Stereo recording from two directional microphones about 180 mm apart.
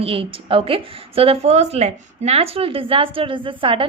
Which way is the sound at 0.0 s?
30° right (ahead or behind).